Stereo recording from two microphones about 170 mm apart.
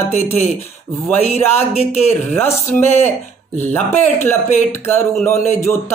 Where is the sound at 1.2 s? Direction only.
40° left (ahead or behind).